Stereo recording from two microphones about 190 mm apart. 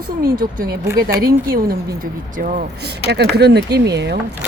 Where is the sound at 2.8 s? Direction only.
60° right (ahead or behind).